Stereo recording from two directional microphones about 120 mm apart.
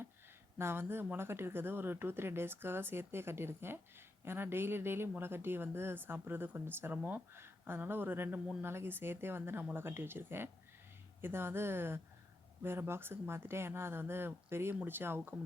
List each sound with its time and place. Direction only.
0.6 s speech: 20° right (ahead or behind)